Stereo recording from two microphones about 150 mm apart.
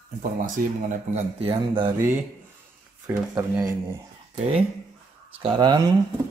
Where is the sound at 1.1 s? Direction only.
40° right (ahead or behind).